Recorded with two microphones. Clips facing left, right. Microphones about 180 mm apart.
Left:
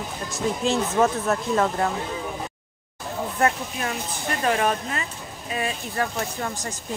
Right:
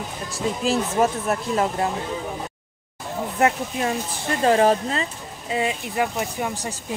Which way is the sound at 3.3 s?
25° right (ahead or behind).